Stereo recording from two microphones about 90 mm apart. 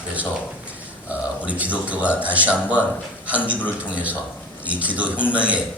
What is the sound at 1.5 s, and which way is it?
A man's voice, 15° right (ahead or behind).